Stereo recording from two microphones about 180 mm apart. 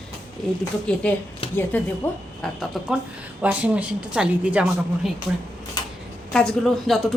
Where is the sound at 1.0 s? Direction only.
5° left (ahead or behind).